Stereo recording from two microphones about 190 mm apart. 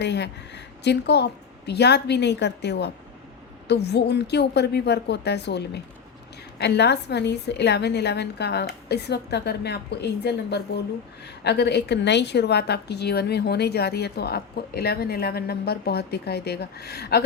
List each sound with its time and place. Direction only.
0.0 s a woman's voice: 65° left (ahead or behind)